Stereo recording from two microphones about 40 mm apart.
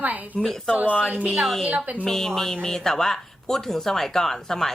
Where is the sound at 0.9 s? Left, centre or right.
Left.